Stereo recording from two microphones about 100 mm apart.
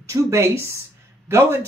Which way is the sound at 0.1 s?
25° right (ahead or behind).